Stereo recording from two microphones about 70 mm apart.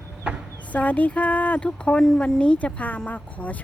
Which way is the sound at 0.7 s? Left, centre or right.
Left.